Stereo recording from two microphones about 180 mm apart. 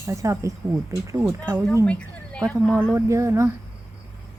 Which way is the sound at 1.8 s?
5° left (ahead or behind).